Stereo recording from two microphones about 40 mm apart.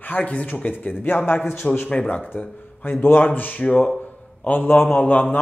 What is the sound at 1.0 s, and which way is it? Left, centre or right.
Speech, left.